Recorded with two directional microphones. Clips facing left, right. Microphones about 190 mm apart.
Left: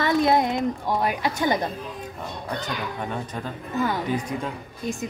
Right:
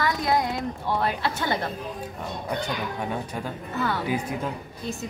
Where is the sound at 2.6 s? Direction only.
10° right (ahead or behind).